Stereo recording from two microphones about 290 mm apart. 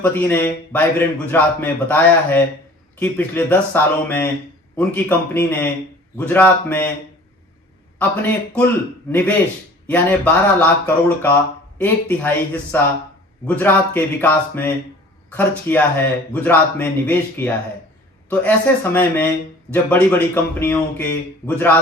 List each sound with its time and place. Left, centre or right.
0.0 s a man's voice: centre
7.9 s a man's voice: centre
9.8 s a man's voice: centre